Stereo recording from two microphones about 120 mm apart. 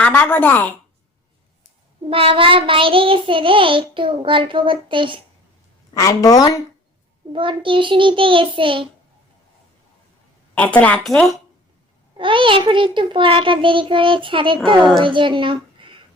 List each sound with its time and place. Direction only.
0.0 s a woman's voice: 15° left (ahead or behind)
2.0 s child singing: 50° right (ahead or behind)
5.9 s a woman's voice: 30° left (ahead or behind)
7.3 s child singing: 45° right (ahead or behind)
10.5 s a woman's voice: 10° left (ahead or behind)
12.1 s child singing: 45° right (ahead or behind)
15.0 s speech: 45° right (ahead or behind)